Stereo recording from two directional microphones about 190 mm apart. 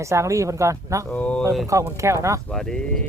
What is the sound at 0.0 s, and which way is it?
Speech, 15° right (ahead or behind).